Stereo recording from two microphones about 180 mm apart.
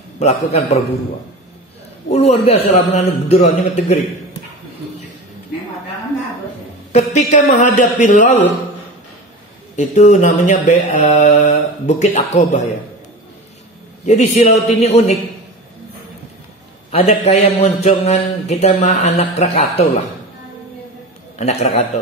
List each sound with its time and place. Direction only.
0.2 s speech: 35° left (ahead or behind)
2.0 s speech: 35° left (ahead or behind)
7.2 s speech: 40° left (ahead or behind)
9.8 s speech: 40° left (ahead or behind)
14.0 s speech: 40° left (ahead or behind)
16.9 s speech: 35° left (ahead or behind)
21.4 s speech: 40° left (ahead or behind)